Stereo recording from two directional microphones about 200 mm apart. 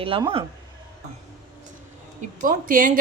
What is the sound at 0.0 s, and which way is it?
Speech, 25° right (ahead or behind).